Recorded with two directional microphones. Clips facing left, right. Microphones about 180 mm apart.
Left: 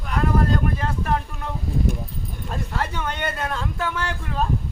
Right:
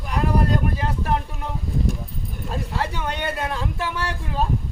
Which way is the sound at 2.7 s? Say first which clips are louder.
Even; 15° right (ahead or behind).